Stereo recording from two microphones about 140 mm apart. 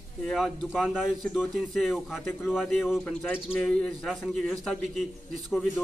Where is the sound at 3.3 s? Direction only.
10° left (ahead or behind).